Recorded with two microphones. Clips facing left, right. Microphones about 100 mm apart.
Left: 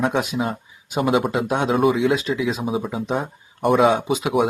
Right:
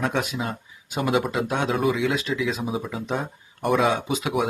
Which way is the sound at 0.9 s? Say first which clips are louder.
Left 4 dB; 30° left (ahead or behind).